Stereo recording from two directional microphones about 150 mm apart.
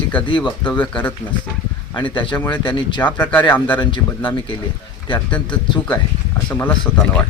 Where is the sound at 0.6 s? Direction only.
10° left (ahead or behind).